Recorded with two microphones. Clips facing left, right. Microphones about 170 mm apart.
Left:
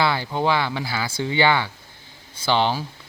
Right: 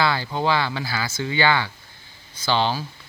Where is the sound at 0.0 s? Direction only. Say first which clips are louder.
Left 1 dB; 20° left (ahead or behind).